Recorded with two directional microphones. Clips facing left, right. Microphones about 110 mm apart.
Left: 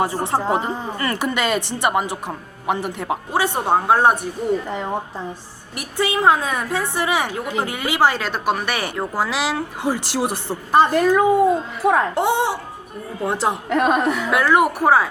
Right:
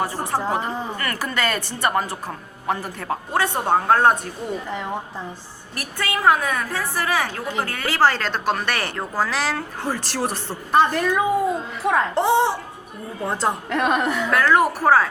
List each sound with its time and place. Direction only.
0.0 s a woman's voice: 25° left (ahead or behind)
10.9 s a woman's voice: 5° left (ahead or behind)
14.3 s speech: 15° left (ahead or behind)